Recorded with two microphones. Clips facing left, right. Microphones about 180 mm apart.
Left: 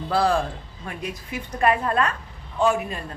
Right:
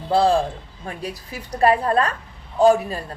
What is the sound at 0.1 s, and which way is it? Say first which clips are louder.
A woman's voice: right 4 dB; 25° right (ahead or behind).